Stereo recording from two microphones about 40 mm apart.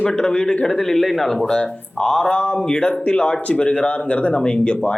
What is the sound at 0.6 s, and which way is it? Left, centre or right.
Speech, centre.